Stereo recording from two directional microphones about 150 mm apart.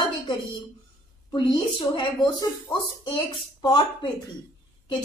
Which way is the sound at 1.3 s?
30° left (ahead or behind).